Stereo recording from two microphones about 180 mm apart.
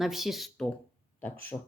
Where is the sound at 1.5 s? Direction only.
20° left (ahead or behind).